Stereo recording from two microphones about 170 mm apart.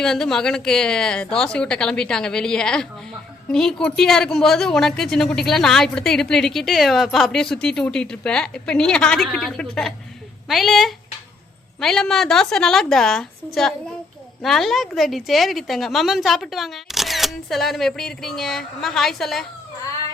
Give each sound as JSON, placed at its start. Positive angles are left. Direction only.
{"t": 0.0, "sound": "a woman's voice", "side_deg": 5}